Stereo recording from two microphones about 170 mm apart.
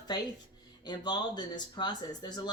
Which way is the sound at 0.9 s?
25° left (ahead or behind).